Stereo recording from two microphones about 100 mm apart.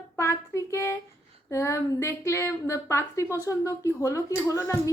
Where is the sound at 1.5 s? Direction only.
30° left (ahead or behind).